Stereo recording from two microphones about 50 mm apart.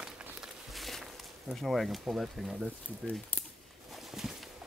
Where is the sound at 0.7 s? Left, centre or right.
Centre.